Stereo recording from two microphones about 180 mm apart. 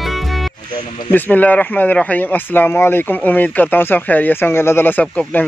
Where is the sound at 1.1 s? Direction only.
10° left (ahead or behind).